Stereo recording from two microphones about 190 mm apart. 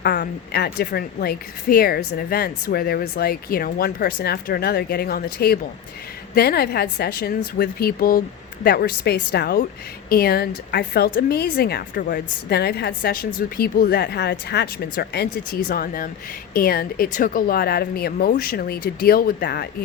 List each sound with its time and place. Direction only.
0.0 s a woman's voice: 60° left (ahead or behind)